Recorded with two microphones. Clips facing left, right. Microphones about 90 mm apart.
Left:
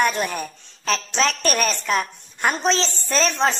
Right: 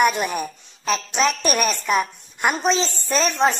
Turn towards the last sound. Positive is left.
turn(degrees=-5)  # may be behind; listen again after turning